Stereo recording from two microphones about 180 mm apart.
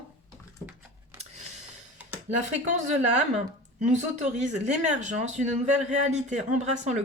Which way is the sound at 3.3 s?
40° right (ahead or behind).